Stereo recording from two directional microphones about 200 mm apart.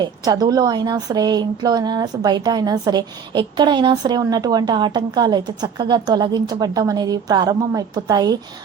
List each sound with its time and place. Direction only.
0.0 s a woman's voice: 20° right (ahead or behind)